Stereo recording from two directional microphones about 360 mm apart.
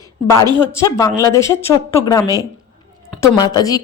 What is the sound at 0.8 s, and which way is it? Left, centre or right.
Speech, centre.